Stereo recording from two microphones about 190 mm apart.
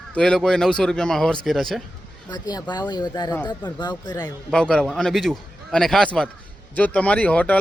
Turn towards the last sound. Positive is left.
turn(degrees=10)  # may be behind; listen again after turning